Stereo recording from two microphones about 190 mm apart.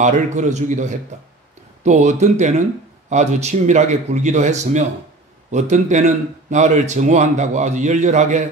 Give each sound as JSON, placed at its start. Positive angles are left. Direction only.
{"t": 0.0, "sound": "a man's voice", "side_deg": -40}